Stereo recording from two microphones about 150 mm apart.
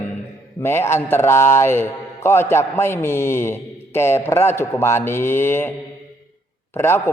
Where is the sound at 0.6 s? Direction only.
15° left (ahead or behind).